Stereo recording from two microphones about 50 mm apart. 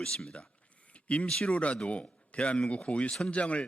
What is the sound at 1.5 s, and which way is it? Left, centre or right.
A man's voice, left.